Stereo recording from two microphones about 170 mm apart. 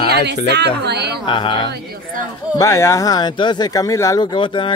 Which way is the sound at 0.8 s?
75° right (ahead or behind).